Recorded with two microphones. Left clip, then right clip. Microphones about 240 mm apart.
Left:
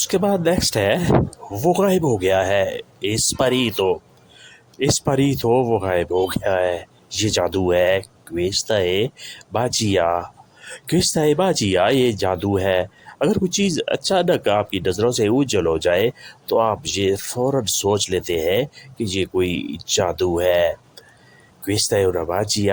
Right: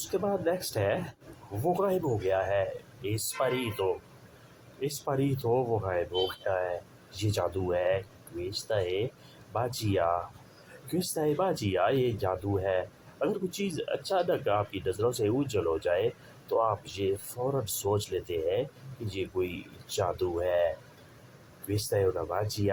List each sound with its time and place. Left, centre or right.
0.1 s speech: left
21.7 s speech: left